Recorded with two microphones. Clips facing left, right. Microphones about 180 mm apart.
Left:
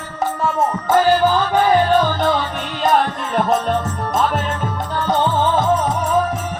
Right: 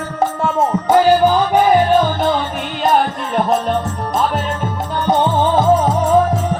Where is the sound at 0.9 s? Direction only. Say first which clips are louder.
Right 3 dB; 15° right (ahead or behind).